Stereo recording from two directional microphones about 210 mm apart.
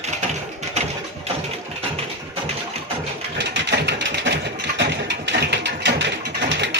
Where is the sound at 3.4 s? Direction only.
55° right (ahead or behind).